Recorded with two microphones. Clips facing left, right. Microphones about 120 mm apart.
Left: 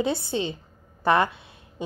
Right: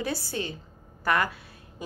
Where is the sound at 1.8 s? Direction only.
25° left (ahead or behind).